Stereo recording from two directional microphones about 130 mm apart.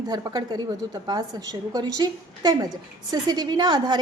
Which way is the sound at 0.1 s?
30° right (ahead or behind).